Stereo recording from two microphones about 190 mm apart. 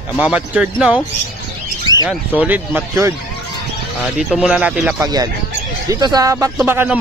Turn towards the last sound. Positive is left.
turn(degrees=-10)  # may be behind; listen again after turning